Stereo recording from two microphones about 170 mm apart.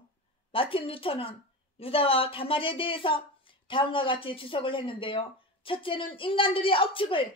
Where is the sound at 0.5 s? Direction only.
30° left (ahead or behind).